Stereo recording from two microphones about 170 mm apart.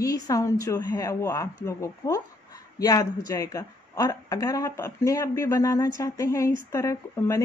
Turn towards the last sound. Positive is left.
turn(degrees=15)  # may be behind; listen again after turning